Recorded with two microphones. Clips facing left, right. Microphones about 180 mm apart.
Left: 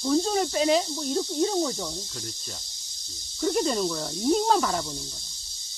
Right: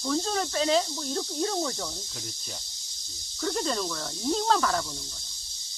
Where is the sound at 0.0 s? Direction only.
15° left (ahead or behind).